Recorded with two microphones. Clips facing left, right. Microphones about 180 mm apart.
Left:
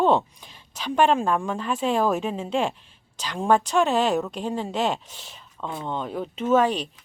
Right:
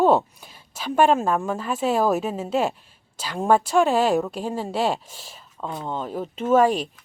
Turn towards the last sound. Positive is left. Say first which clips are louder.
# right 3 dB
turn(degrees=-45)  # may be behind; listen again after turning